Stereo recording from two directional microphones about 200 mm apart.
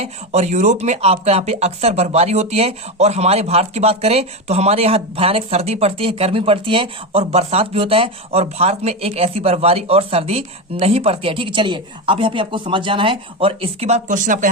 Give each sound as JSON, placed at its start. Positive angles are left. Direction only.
{"t": 0.0, "sound": "speech", "side_deg": -35}